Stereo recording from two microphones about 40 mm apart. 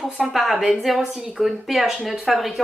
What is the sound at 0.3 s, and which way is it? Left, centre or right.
Speech, centre.